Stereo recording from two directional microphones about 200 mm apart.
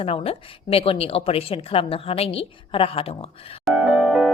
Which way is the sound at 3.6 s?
5° right (ahead or behind).